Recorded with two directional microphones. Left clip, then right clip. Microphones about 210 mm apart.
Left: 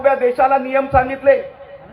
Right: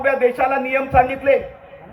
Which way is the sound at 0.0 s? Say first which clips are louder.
Left 3 dB; 35° right (ahead or behind).